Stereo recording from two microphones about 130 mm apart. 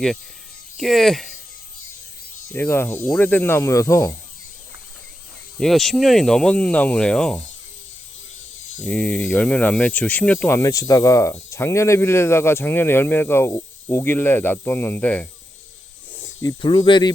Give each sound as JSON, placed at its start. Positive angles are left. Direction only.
{"t": 0.8, "sound": "speech", "side_deg": 0}
{"t": 2.5, "sound": "speech", "side_deg": 20}
{"t": 5.5, "sound": "speech", "side_deg": 0}
{"t": 8.8, "sound": "speech", "side_deg": 10}
{"t": 16.1, "sound": "snake", "side_deg": 20}
{"t": 16.6, "sound": "speech", "side_deg": 40}